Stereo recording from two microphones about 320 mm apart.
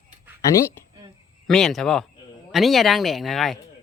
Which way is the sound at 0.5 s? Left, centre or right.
Centre.